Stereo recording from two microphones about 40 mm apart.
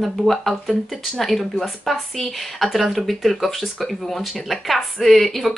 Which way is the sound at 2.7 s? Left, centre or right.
Centre.